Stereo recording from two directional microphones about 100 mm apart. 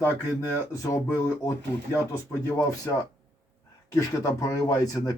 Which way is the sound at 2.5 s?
35° left (ahead or behind).